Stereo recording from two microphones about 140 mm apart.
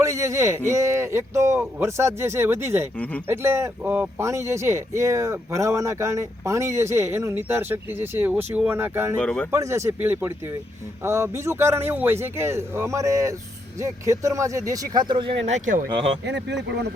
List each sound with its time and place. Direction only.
0.0 s speech: 20° right (ahead or behind)
3.8 s speech: 10° right (ahead or behind)
4.2 s speech: 20° right (ahead or behind)
9.1 s speech: 10° left (ahead or behind)
9.5 s speech: 20° right (ahead or behind)
15.4 s speech: 60° right (ahead or behind)